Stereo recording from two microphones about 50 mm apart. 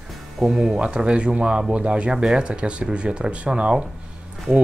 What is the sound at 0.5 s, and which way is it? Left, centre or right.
Speech, centre.